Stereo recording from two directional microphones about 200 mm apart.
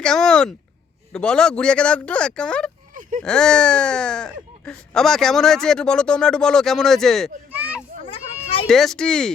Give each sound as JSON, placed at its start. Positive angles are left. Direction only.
{"t": 0.0, "sound": "speech", "side_deg": 5}
{"t": 2.9, "sound": "a sound", "side_deg": -40}
{"t": 3.2, "sound": "speech", "side_deg": 5}
{"t": 7.5, "sound": "children playing", "side_deg": -5}
{"t": 8.0, "sound": "a sound", "side_deg": 25}
{"t": 8.6, "sound": "speech", "side_deg": 0}